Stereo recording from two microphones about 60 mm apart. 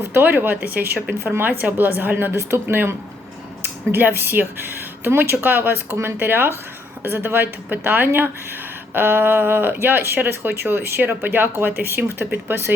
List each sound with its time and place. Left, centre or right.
0.1 s speech: right
2.3 s speech: right